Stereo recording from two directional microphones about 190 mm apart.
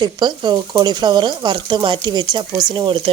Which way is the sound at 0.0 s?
25° right (ahead or behind).